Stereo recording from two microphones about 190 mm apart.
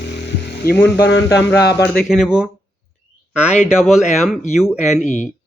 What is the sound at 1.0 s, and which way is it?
Speech, 65° left (ahead or behind).